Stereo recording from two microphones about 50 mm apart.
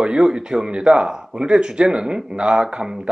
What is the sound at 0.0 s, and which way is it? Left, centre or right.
Speech, centre.